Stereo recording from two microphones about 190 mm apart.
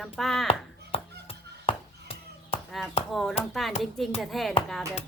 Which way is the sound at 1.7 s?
30° left (ahead or behind).